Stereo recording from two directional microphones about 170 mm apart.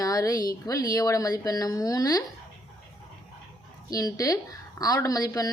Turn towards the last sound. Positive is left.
turn(degrees=20)  # may be behind; listen again after turning